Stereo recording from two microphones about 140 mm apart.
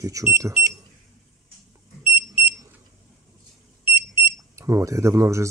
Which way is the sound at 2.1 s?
40° left (ahead or behind).